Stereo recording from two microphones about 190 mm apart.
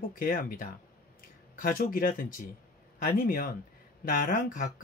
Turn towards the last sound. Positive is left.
turn(degrees=45)  # may be behind; listen again after turning